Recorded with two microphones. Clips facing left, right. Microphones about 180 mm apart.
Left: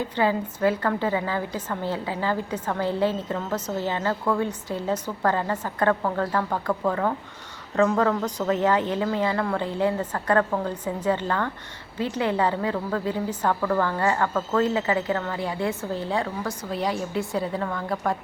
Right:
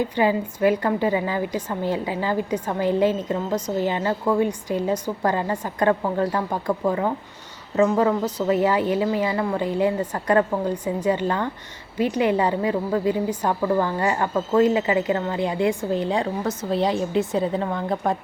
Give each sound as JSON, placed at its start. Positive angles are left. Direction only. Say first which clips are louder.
{"t": 0.0, "sound": "a woman's voice", "louder": "right 3 dB", "side_deg": -15}